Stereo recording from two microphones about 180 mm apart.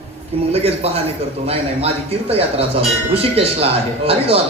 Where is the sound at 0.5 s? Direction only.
35° right (ahead or behind).